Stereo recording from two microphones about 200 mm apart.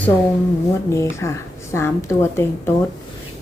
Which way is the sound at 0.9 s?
15° left (ahead or behind).